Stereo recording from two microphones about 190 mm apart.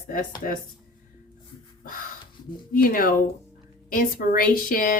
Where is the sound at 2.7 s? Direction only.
50° left (ahead or behind).